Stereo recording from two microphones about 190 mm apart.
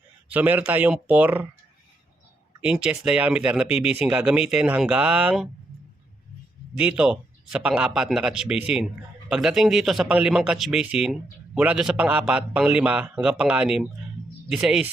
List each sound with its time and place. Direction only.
0.3 s speech: 10° right (ahead or behind)
2.6 s speech: 5° right (ahead or behind)
6.7 s speech: 5° right (ahead or behind)